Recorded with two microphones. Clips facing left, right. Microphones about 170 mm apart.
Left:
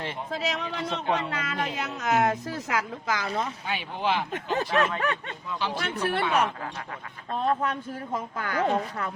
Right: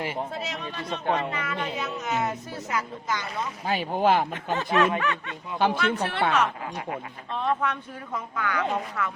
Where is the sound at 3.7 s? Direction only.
45° right (ahead or behind).